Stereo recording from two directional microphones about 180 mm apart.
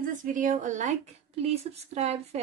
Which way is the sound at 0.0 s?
45° right (ahead or behind).